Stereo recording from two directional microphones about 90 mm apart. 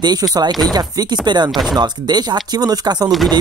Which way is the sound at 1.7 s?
50° right (ahead or behind).